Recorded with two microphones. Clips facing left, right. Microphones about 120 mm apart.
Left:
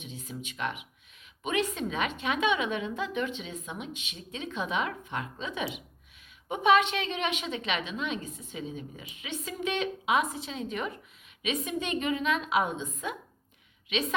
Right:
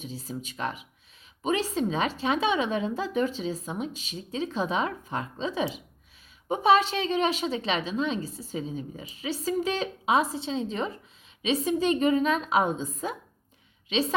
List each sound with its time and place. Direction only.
0.0 s speech: 35° right (ahead or behind)